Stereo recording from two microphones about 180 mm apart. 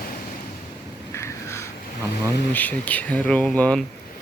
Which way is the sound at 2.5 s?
10° left (ahead or behind).